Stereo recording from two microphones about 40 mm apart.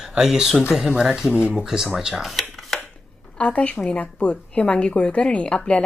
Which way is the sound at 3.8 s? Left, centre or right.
Left.